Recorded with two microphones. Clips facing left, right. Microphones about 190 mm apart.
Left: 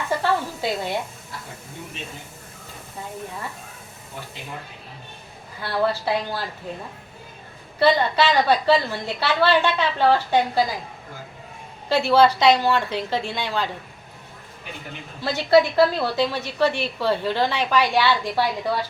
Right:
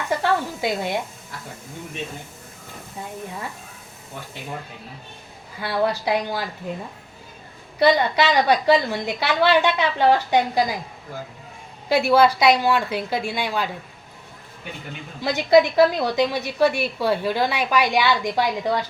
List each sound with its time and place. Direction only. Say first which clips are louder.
0.2 s a sound: right 1 dB; 15° right (ahead or behind)
5.6 s a woman's voice: right 1 dB; 15° right (ahead or behind)
7.8 s a woman's voice: right 1 dB; 15° right (ahead or behind)
11.9 s a woman's voice: even; 15° right (ahead or behind)
15.2 s a woman's voice: right 1 dB; 15° right (ahead or behind)